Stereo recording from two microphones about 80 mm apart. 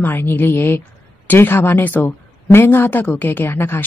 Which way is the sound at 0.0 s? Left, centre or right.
Left.